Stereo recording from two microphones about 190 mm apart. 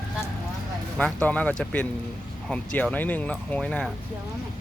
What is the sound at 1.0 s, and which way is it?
Speech, 5° left (ahead or behind).